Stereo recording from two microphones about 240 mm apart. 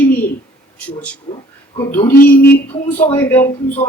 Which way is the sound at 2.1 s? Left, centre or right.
Left.